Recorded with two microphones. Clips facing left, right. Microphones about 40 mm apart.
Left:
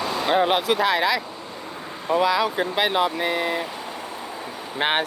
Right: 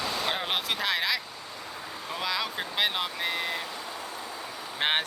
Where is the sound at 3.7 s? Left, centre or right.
Left.